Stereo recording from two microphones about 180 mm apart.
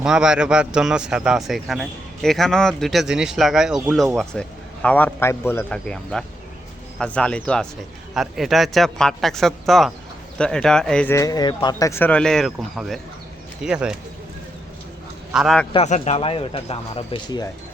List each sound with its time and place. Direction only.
0.0 s a man's voice: 5° right (ahead or behind)
15.3 s a man's voice: centre (ahead or behind)
15.7 s speech: 35° left (ahead or behind)